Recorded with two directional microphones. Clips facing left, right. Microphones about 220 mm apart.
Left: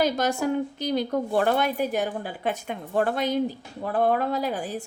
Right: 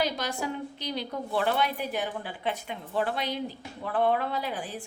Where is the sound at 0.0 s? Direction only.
45° left (ahead or behind).